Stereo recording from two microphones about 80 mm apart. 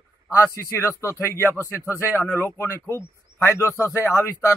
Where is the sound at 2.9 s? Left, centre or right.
Left.